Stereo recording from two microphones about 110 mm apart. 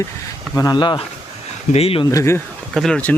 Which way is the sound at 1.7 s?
60° left (ahead or behind).